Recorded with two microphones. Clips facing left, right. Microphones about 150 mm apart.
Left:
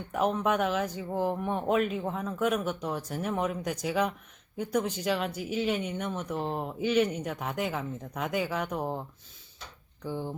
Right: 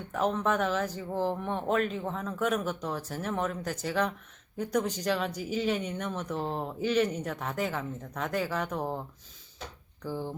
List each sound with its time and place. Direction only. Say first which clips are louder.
0.1 s speech: left 1 dB; 10° left (ahead or behind)